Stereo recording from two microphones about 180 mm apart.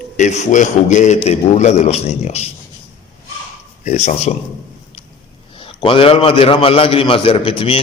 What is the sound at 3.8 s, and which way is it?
Speech, 40° left (ahead or behind).